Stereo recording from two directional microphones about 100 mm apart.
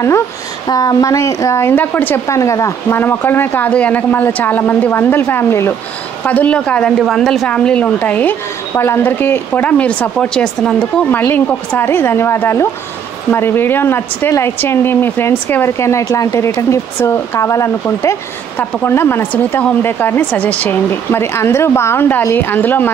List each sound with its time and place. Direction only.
0.7 s speech: 40° left (ahead or behind); by 2.2 s 20° left (ahead or behind)
2.2 s speech: 30° left (ahead or behind)
6.2 s a woman's voice: 15° left (ahead or behind)
11.1 s speech: 20° left (ahead or behind)